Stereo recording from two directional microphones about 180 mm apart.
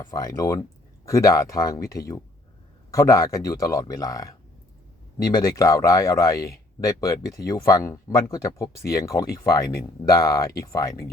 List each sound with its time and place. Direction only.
0.0 s speech: 20° left (ahead or behind)